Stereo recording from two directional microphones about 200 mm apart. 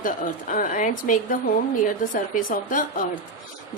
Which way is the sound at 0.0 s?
40° left (ahead or behind).